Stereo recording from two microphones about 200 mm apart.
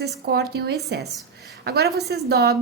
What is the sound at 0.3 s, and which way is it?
A woman's voice, 55° right (ahead or behind).